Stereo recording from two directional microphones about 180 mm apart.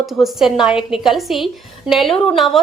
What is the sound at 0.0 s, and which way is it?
A woman's voice, centre (ahead or behind).